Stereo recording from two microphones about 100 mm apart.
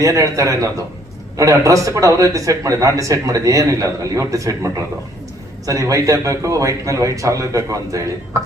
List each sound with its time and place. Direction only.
0.0 s speech: 35° right (ahead or behind)